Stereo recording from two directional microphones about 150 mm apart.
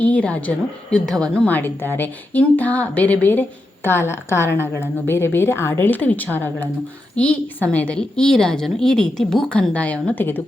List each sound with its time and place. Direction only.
0.0 s a woman's voice: 10° left (ahead or behind)